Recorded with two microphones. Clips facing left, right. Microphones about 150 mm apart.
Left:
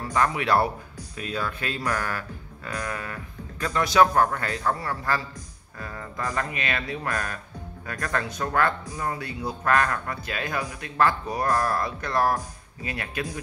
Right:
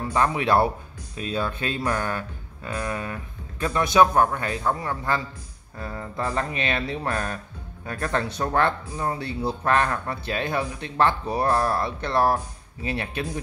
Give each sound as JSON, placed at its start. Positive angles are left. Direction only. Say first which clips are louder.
{"t": 0.0, "sound": "speech", "louder": "right 2 dB", "side_deg": -25}